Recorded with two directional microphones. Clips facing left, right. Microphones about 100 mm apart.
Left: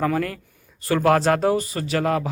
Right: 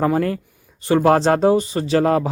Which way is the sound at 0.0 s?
30° right (ahead or behind).